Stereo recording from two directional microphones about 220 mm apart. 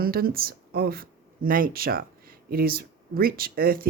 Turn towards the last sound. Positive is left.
turn(degrees=-40)  # may be behind; listen again after turning